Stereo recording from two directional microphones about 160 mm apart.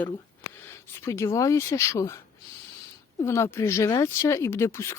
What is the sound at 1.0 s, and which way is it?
Speech, 20° left (ahead or behind).